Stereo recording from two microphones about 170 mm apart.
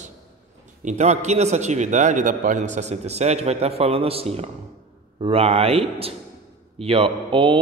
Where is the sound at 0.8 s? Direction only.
45° right (ahead or behind).